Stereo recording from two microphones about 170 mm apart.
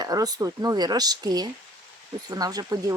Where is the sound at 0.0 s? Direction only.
20° right (ahead or behind).